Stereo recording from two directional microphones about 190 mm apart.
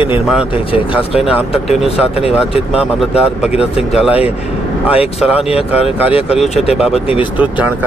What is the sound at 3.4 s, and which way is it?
Speech, 5° right (ahead or behind).